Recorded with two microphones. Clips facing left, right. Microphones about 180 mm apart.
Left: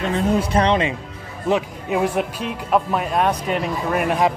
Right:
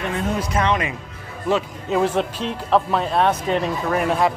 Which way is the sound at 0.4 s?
30° left (ahead or behind).